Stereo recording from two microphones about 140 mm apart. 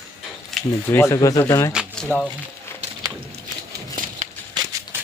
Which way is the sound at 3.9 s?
75° right (ahead or behind).